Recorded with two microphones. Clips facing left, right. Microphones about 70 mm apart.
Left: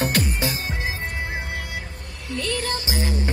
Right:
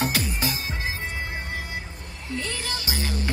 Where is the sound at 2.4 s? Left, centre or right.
Left.